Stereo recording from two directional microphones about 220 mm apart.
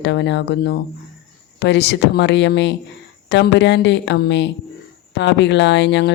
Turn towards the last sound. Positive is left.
turn(degrees=50)  # may be behind; listen again after turning